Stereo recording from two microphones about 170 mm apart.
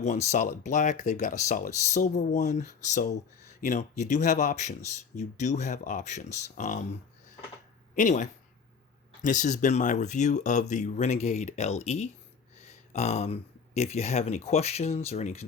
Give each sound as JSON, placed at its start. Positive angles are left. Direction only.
{"t": 0.0, "sound": "speech", "side_deg": 40}
{"t": 7.9, "sound": "speech", "side_deg": 45}